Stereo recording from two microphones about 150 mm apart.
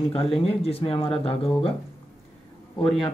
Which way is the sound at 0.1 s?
40° left (ahead or behind).